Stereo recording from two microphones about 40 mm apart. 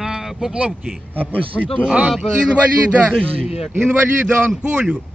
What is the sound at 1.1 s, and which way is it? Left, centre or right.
Speech, right.